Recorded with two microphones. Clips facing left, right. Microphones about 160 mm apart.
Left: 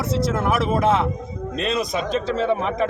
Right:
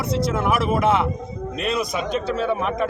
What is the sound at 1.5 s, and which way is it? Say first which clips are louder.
Speech: left 1 dB; centre (ahead or behind).